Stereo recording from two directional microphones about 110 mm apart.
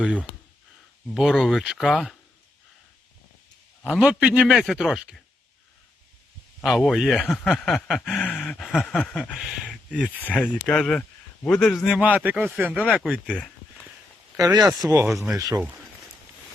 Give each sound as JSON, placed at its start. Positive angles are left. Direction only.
{"t": 1.1, "sound": "a man's voice", "side_deg": -5}
{"t": 1.9, "sound": "speech", "side_deg": 10}
{"t": 3.8, "sound": "a man's voice", "side_deg": -5}
{"t": 6.6, "sound": "a man's voice", "side_deg": 0}
{"t": 8.4, "sound": "a man's voice", "side_deg": 5}
{"t": 9.3, "sound": "speech", "side_deg": -5}
{"t": 10.2, "sound": "a man's voice", "side_deg": 10}
{"t": 11.9, "sound": "speech", "side_deg": -15}
{"t": 12.7, "sound": "speech", "side_deg": 10}
{"t": 13.3, "sound": "a sound", "side_deg": 10}
{"t": 14.3, "sound": "speech", "side_deg": -35}
{"t": 14.7, "sound": "a man's voice", "side_deg": -5}